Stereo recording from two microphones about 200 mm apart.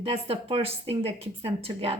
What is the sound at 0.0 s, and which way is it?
A woman's voice, 30° right (ahead or behind).